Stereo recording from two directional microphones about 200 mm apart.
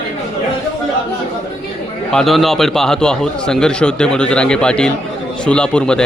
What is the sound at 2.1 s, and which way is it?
A man's voice, centre (ahead or behind).